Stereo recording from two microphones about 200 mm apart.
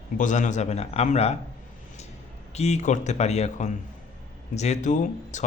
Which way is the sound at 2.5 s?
35° left (ahead or behind).